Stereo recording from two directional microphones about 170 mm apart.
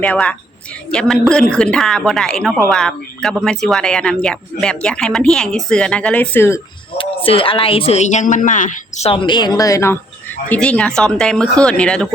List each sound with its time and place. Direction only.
0.0 s speech: 5° left (ahead or behind)
6.9 s speech: 30° left (ahead or behind)
10.5 s speech: 5° left (ahead or behind)